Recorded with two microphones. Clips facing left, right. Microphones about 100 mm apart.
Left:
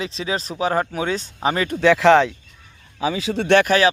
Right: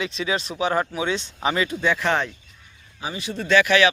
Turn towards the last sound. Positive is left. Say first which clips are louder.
# left 1 dB
turn(degrees=40)  # may be behind; listen again after turning